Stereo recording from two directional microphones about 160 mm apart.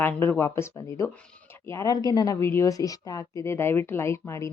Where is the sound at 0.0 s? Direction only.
15° left (ahead or behind).